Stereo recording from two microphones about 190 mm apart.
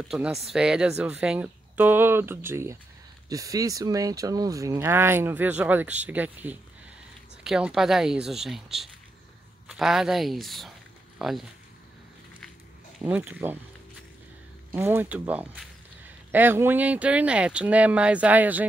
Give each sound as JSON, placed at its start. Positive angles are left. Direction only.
{"t": 0.4, "sound": "speech", "side_deg": -5}
{"t": 13.0, "sound": "speech", "side_deg": -10}
{"t": 14.7, "sound": "speech", "side_deg": -10}